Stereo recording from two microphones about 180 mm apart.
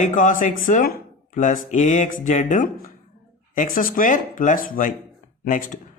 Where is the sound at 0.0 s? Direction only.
45° left (ahead or behind).